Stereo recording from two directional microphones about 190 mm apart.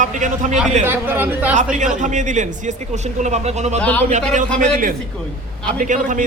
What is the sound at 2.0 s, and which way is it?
A man's voice, 40° right (ahead or behind).